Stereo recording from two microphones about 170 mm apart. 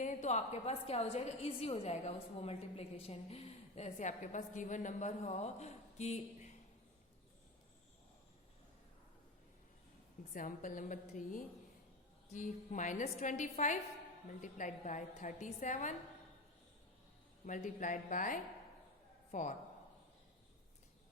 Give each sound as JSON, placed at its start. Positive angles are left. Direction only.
{"t": 0.0, "sound": "a woman's voice", "side_deg": 45}
{"t": 10.3, "sound": "a woman's voice", "side_deg": 50}
{"t": 17.4, "sound": "a woman's voice", "side_deg": 45}